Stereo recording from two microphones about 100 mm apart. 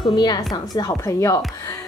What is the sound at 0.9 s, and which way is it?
Speech, 30° left (ahead or behind).